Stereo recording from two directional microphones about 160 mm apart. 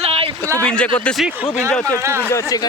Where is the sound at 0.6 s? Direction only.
5° left (ahead or behind).